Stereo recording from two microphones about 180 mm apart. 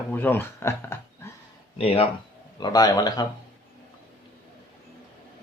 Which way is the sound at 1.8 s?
30° left (ahead or behind).